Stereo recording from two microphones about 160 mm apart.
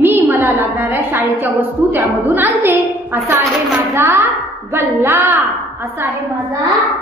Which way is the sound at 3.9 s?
20° right (ahead or behind).